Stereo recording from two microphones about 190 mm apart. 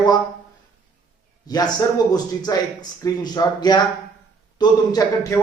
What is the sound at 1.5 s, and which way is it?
Speech, 20° left (ahead or behind).